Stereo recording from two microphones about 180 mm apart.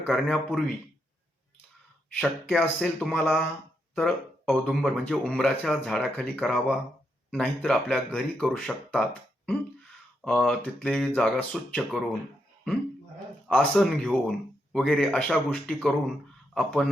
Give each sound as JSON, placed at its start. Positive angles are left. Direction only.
{"t": 0.1, "sound": "speech", "side_deg": 5}
{"t": 2.1, "sound": "speech", "side_deg": 5}
{"t": 10.2, "sound": "speech", "side_deg": 5}
{"t": 13.5, "sound": "speech", "side_deg": 5}